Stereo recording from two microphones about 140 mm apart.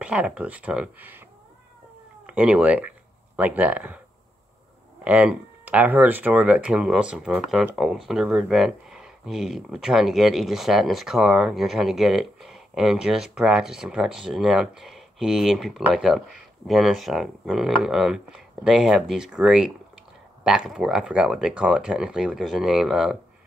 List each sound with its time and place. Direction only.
0.0 s speech: 10° right (ahead or behind)
2.2 s speech: 10° right (ahead or behind)
5.0 s speech: 10° right (ahead or behind)